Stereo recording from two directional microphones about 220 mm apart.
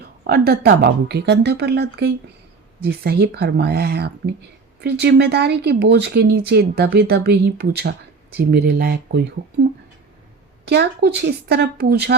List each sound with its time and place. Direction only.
0.3 s speech: 45° right (ahead or behind)
10.7 s speech: 50° right (ahead or behind)